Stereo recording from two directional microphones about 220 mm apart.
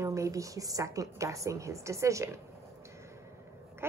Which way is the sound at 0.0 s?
15° right (ahead or behind).